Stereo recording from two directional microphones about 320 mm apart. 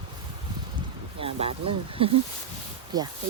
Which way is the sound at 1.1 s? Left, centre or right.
Centre.